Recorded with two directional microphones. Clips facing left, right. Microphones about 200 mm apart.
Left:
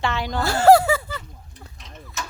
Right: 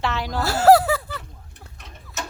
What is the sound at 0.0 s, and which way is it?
Speech, centre (ahead or behind).